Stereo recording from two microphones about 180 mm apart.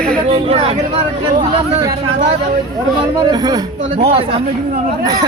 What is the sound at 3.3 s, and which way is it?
Speech, 20° right (ahead or behind).